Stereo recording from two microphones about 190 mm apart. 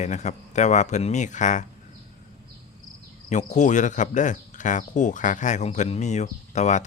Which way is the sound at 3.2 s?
40° left (ahead or behind).